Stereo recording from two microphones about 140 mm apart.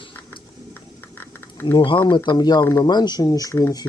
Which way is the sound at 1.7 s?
35° left (ahead or behind).